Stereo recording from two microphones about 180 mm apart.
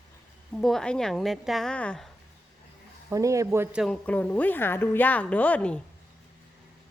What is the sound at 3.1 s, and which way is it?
Speech, 15° right (ahead or behind).